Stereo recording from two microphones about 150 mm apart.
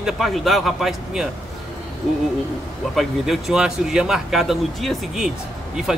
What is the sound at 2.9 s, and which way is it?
Speech, centre (ahead or behind).